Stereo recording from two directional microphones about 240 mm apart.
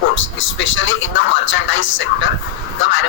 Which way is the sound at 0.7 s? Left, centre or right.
Left.